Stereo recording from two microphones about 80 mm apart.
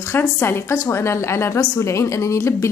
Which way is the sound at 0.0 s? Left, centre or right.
Left.